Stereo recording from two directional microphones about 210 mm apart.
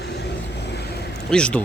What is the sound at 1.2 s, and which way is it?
Speech, 5° left (ahead or behind).